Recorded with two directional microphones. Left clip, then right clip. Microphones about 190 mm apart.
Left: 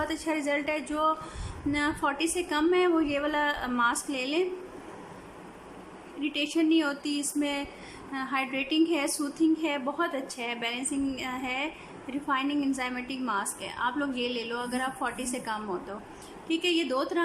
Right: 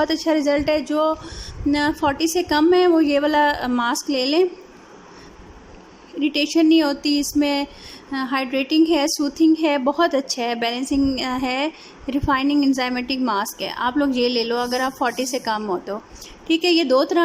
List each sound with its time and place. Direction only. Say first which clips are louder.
0.0 s a woman's voice: right 11 dB; 30° right (ahead or behind)
6.1 s a woman's voice: right 10 dB; 30° right (ahead or behind)